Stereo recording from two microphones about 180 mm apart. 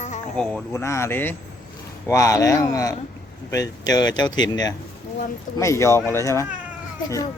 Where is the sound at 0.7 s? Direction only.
15° left (ahead or behind).